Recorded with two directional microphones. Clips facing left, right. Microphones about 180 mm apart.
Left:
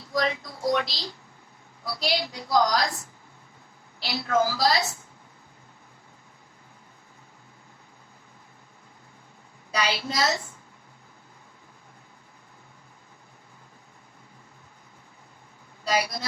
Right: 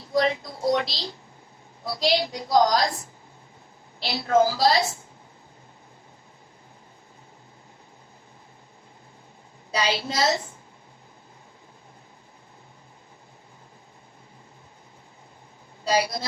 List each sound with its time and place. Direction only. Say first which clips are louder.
0.1 s a woman's voice: right 4 dB; 25° right (ahead or behind)
4.0 s a woman's voice: right 4 dB; 20° right (ahead or behind)
9.7 s a woman's voice: right 2 dB; 25° right (ahead or behind)
15.8 s speech: right 3 dB; 30° right (ahead or behind)